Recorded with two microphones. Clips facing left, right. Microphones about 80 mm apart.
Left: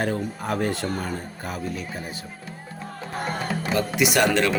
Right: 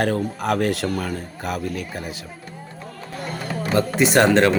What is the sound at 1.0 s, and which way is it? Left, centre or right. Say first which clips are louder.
Speech: right 3 dB; right.